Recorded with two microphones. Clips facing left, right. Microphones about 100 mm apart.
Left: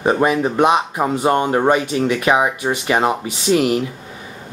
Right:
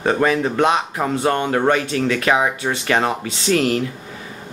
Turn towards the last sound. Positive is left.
turn(degrees=15)  # may be behind; listen again after turning